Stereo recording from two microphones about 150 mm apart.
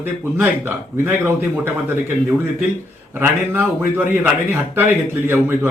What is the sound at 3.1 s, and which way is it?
A man's voice, 15° right (ahead or behind).